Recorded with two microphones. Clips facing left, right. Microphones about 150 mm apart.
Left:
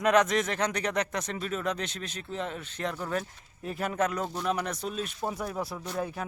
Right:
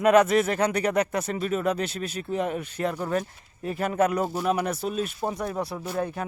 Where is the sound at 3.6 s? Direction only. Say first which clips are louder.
Right 5 dB; centre (ahead or behind).